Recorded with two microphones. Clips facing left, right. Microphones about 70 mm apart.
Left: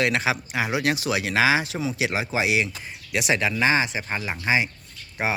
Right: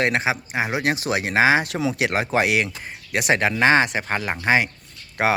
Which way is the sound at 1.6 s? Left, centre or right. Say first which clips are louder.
Right 3 dB; right.